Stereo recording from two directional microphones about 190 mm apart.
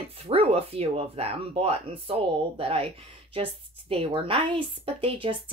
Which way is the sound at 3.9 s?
30° right (ahead or behind).